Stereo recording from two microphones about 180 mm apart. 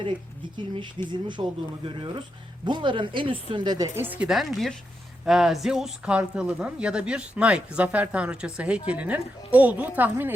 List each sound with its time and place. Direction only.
1.0 s speech: 25° right (ahead or behind); by 10.3 s 10° right (ahead or behind)